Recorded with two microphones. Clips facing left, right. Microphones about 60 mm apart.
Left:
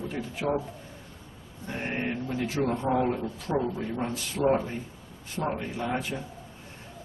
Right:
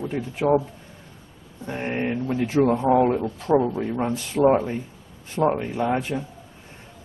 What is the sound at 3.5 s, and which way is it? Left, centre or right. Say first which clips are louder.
A man's voice: right 8 dB; right.